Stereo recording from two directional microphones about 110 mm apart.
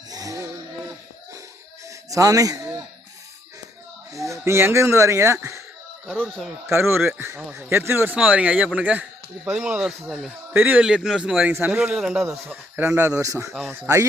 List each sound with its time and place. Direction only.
0.1 s a sound: 30° right (ahead or behind)
1.9 s a sound: 30° right (ahead or behind)
4.1 s speech: 30° right (ahead or behind)
6.1 s speech: 15° right (ahead or behind)
10.5 s speech: 15° right (ahead or behind)
10.8 s speech: 5° right (ahead or behind)
12.5 s speech: 20° right (ahead or behind)
13.5 s speech: 5° right (ahead or behind)
13.7 s speech: 25° right (ahead or behind)